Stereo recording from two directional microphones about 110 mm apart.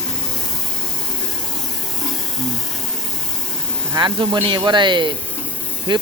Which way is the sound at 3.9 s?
45° right (ahead or behind).